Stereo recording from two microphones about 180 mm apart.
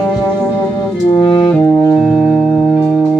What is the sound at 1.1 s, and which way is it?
Brass instrument, 25° left (ahead or behind).